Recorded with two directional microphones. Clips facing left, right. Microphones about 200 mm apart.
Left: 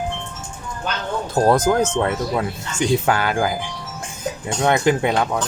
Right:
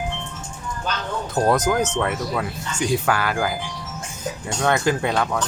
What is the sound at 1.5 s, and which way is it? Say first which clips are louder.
Speech: left 3 dB; 30° left (ahead or behind).